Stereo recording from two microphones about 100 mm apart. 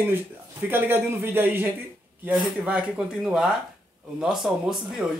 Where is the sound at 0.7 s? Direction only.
20° right (ahead or behind); by 5.0 s 5° right (ahead or behind).